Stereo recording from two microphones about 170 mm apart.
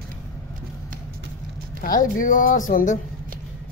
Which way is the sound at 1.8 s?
55° left (ahead or behind).